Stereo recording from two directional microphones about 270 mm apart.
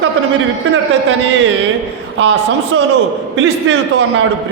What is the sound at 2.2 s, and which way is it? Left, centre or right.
A man's voice, right.